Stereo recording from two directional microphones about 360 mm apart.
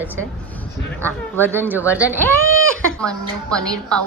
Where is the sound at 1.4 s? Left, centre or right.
Centre.